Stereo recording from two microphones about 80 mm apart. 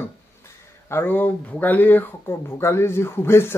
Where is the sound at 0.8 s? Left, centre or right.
Left.